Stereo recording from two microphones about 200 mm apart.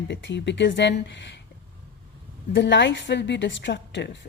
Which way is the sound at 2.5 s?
65° left (ahead or behind).